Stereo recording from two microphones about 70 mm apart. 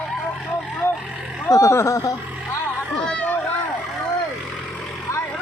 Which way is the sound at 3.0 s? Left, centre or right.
Centre.